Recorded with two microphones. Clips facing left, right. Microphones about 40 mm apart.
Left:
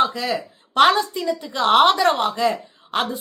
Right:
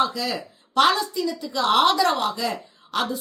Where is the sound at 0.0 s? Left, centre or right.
Left.